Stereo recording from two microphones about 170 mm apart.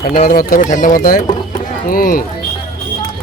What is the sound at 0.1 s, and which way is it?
A man's voice, 55° left (ahead or behind).